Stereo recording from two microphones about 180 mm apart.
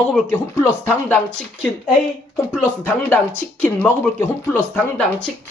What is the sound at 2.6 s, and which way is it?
Speech, 10° left (ahead or behind).